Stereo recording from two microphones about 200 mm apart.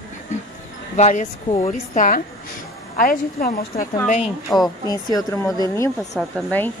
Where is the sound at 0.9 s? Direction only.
35° left (ahead or behind).